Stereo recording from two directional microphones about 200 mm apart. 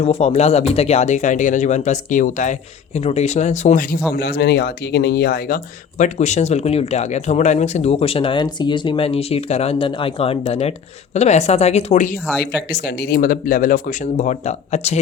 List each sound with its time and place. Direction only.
0.0 s speech: 30° left (ahead or behind)
4.1 s speech: 50° left (ahead or behind)
6.0 s speech: 35° left (ahead or behind)
12.7 s speech: 50° left (ahead or behind); by 15.0 s 35° left (ahead or behind)